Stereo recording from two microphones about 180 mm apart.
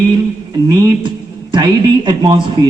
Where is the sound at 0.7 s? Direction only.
20° right (ahead or behind).